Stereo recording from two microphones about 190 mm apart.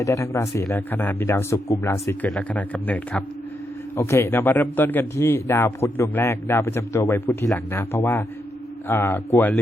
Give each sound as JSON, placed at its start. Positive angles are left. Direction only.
{"t": 0.0, "sound": "speech", "side_deg": 15}